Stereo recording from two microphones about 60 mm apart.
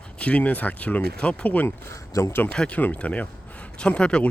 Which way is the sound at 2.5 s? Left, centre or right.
Centre.